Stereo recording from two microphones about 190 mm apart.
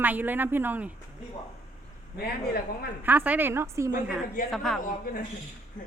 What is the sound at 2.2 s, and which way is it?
Speech, 55° left (ahead or behind).